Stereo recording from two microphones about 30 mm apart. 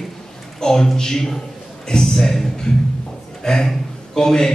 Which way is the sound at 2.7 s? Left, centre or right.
Left.